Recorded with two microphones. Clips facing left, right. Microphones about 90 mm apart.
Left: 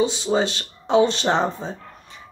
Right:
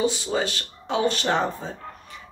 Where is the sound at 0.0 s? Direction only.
20° left (ahead or behind).